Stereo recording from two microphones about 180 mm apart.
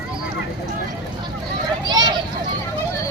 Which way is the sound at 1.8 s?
25° right (ahead or behind).